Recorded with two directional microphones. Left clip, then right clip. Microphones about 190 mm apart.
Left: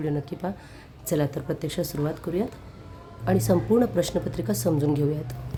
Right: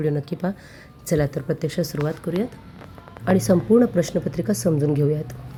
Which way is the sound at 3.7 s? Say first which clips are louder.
Right 5 dB; 15° right (ahead or behind).